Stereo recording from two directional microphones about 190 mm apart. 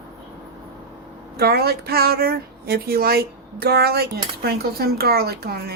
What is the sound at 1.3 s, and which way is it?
Speech, 55° right (ahead or behind).